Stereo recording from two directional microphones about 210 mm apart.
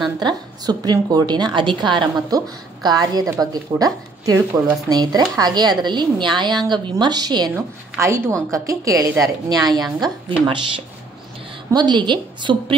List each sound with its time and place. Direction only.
0.2 s a woman's voice: 20° right (ahead or behind)
11.7 s a woman's voice: 20° right (ahead or behind)